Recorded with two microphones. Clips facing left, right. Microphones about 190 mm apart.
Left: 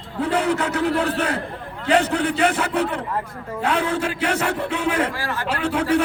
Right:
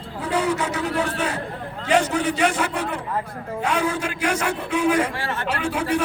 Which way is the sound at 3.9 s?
60° left (ahead or behind).